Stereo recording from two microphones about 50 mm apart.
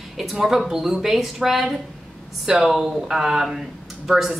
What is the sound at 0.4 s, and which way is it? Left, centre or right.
Speech, centre.